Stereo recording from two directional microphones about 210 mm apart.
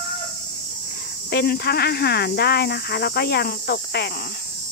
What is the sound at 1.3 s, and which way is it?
Speech, 50° left (ahead or behind).